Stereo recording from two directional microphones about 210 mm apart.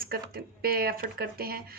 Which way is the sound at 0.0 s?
45° right (ahead or behind).